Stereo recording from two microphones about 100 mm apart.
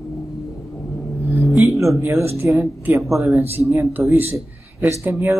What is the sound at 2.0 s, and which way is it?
Speech, 25° right (ahead or behind).